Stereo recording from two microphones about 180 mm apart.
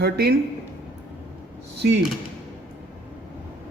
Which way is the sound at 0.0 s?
60° right (ahead or behind).